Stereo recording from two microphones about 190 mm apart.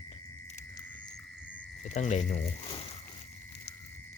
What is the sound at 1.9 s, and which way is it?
Speech, 40° left (ahead or behind).